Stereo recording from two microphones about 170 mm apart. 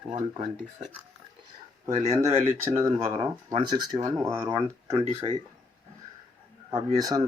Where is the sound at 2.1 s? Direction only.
20° right (ahead or behind).